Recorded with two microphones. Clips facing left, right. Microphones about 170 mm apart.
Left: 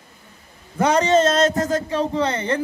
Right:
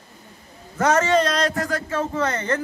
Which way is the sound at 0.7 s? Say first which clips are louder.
Left 2 dB; 15° left (ahead or behind).